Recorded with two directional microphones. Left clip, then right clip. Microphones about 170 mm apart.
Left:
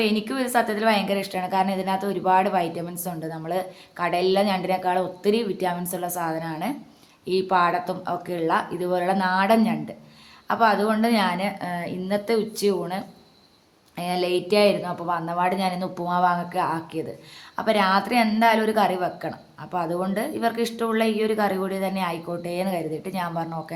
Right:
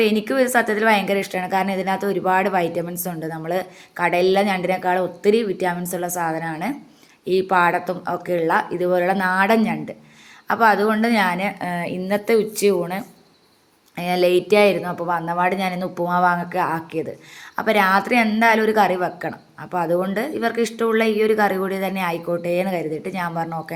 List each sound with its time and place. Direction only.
0.0 s a woman's voice: 15° right (ahead or behind)